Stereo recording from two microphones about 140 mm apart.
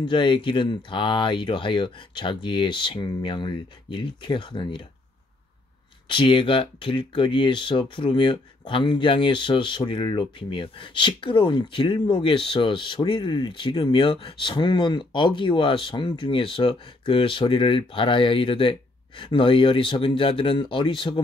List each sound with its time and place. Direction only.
0.0 s speech: 35° left (ahead or behind)
6.0 s speech: 35° left (ahead or behind)